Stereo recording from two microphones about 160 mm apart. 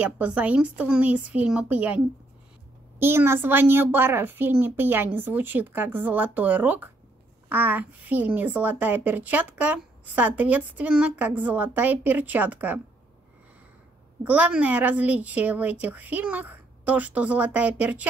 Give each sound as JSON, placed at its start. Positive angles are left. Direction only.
{"t": 0.0, "sound": "speech", "side_deg": -10}
{"t": 3.0, "sound": "speech", "side_deg": -15}
{"t": 14.2, "sound": "speech", "side_deg": -10}